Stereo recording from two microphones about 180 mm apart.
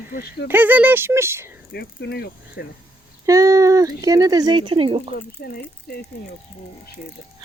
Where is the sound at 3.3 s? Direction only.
20° right (ahead or behind).